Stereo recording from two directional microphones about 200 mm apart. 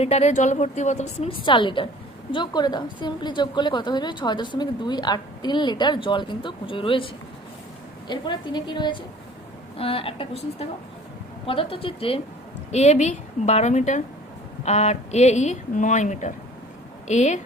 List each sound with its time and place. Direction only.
0.0 s a woman's voice: 30° left (ahead or behind)